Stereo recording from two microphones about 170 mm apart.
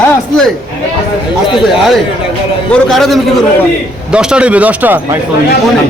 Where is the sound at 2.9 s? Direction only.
Centre (ahead or behind).